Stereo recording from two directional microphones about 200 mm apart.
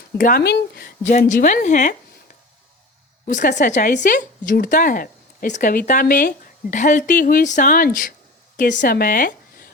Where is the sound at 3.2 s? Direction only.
40° left (ahead or behind).